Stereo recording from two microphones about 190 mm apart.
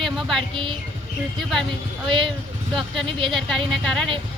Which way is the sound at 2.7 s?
Centre (ahead or behind).